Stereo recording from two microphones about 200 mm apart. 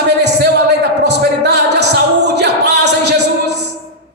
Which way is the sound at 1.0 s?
55° right (ahead or behind).